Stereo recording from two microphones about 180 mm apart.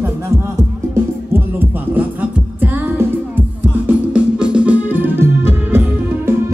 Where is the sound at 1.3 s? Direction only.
10° right (ahead or behind).